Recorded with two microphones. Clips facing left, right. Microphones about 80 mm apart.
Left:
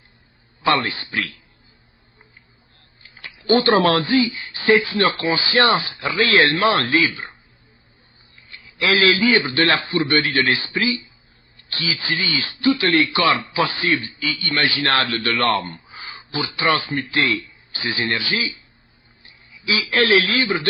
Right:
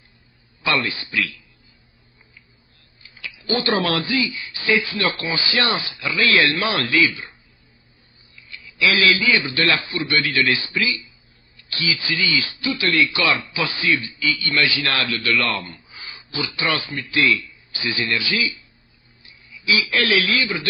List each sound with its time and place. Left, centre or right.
0.6 s a man's voice: left
3.0 s a man's voice: left
8.4 s a man's voice: left